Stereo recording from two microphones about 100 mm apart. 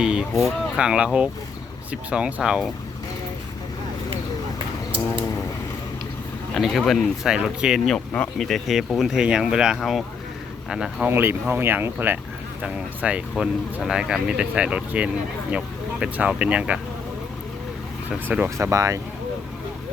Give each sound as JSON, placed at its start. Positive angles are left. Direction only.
{"t": 0.0, "sound": "a sound", "side_deg": -10}
{"t": 0.4, "sound": "speech", "side_deg": -10}
{"t": 6.6, "sound": "speech", "side_deg": 0}
{"t": 7.9, "sound": "speech", "side_deg": 15}
{"t": 8.4, "sound": "speech", "side_deg": 0}
{"t": 11.0, "sound": "speech", "side_deg": -25}
{"t": 18.3, "sound": "speech", "side_deg": -20}
{"t": 18.5, "sound": "speech", "side_deg": -30}